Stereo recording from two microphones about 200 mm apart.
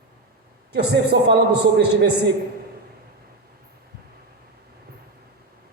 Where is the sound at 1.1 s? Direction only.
55° right (ahead or behind).